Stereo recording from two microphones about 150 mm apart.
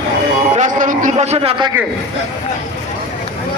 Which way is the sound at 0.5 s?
55° right (ahead or behind).